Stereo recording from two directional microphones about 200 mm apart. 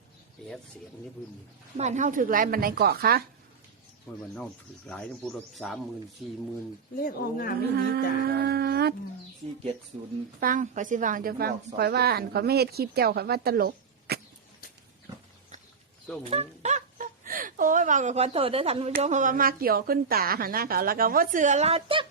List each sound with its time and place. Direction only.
1.7 s a woman's voice: 35° right (ahead or behind)
4.1 s a man's voice: 5° left (ahead or behind)
7.0 s a woman's voice: 45° left (ahead or behind)
7.7 s a woman's voice: 55° right (ahead or behind)
10.4 s a woman's voice: 40° right (ahead or behind)
16.3 s a woman's voice: 35° right (ahead or behind)